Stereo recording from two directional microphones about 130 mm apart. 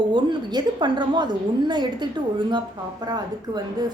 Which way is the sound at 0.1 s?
35° right (ahead or behind).